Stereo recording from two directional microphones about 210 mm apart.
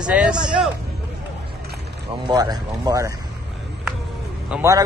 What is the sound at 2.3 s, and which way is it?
Speech, 20° right (ahead or behind).